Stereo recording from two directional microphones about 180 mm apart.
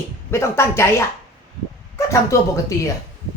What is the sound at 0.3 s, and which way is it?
Speech, 15° left (ahead or behind).